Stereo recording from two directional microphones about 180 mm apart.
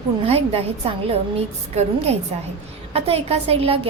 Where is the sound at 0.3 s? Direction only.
35° right (ahead or behind).